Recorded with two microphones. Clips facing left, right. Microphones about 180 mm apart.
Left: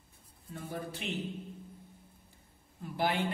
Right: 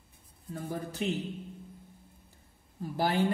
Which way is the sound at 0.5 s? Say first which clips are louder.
Right 3 dB; 40° right (ahead or behind).